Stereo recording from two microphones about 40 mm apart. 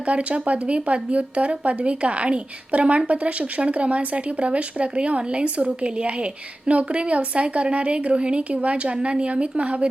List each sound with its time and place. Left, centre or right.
0.0 s speech: right